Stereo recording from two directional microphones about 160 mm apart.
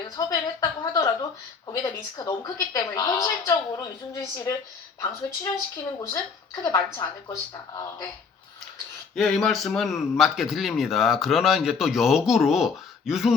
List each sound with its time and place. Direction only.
0.0 s a woman's voice: 25° left (ahead or behind)
6.6 s a woman's voice: 20° left (ahead or behind)
9.1 s speech: centre (ahead or behind)